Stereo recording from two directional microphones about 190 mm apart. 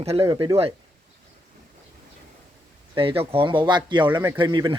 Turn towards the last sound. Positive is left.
turn(degrees=-25)  # may be behind; listen again after turning